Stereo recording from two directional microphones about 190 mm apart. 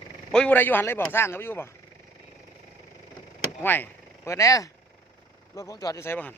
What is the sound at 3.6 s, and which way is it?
Speech, 10° left (ahead or behind).